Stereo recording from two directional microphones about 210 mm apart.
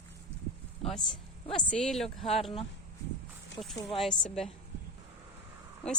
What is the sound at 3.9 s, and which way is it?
Speech, centre (ahead or behind).